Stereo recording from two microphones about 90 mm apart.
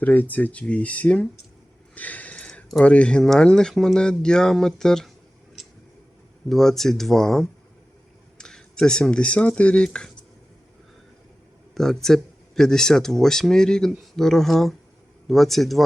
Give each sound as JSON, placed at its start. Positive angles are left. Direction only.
{"t": 0.0, "sound": "speech", "side_deg": 20}
{"t": 2.0, "sound": "a sound", "side_deg": 15}
{"t": 2.8, "sound": "speech", "side_deg": 15}
{"t": 6.5, "sound": "speech", "side_deg": 5}
{"t": 11.7, "sound": "speech", "side_deg": 5}